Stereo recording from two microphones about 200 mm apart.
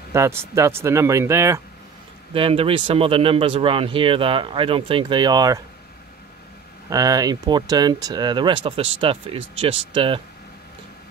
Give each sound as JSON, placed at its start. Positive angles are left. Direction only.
{"t": 0.1, "sound": "speech", "side_deg": -15}
{"t": 2.3, "sound": "speech", "side_deg": -25}
{"t": 6.9, "sound": "speech", "side_deg": -20}